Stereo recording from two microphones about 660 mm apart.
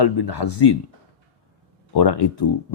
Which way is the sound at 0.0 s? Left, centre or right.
Left.